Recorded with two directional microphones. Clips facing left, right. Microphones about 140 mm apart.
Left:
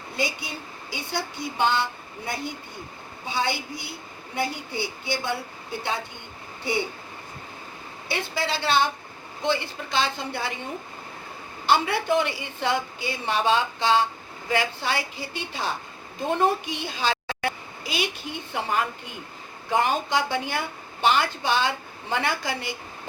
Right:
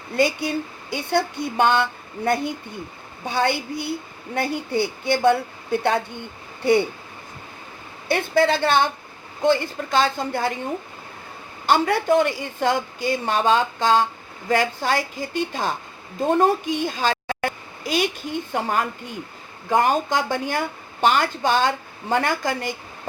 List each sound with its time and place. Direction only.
0.2 s speech: 55° right (ahead or behind)
8.0 s speech: 50° right (ahead or behind)
11.6 s a woman's voice: 45° right (ahead or behind)